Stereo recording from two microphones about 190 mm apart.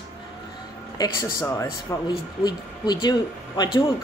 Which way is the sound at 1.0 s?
20° left (ahead or behind).